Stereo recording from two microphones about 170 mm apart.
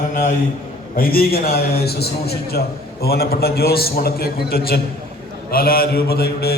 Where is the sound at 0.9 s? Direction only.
60° left (ahead or behind).